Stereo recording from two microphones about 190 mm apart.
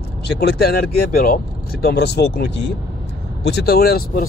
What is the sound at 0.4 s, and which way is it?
Speech, 60° left (ahead or behind).